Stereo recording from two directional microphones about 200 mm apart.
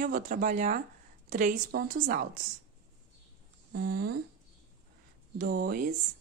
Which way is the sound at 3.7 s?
50° right (ahead or behind).